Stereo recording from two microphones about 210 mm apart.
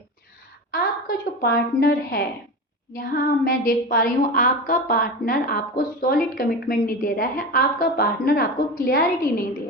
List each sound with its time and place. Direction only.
0.7 s a woman's voice: 45° left (ahead or behind)